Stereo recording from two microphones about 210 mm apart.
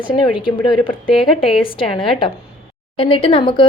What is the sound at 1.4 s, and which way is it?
A woman's voice, 25° left (ahead or behind).